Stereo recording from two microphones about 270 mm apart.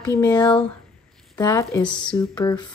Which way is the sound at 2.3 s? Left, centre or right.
Centre.